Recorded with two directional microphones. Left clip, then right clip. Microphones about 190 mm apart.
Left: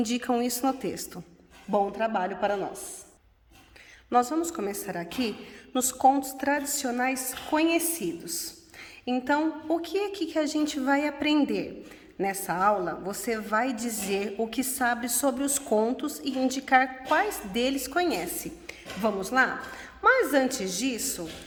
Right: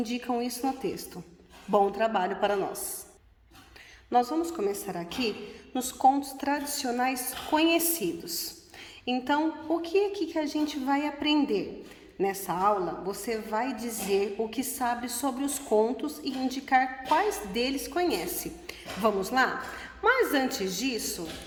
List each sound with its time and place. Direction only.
0.0 s a woman's voice: 30° left (ahead or behind)
1.7 s a woman's voice: 5° left (ahead or behind)
4.1 s a woman's voice: 20° left (ahead or behind)
18.7 s a woman's voice: 10° left (ahead or behind)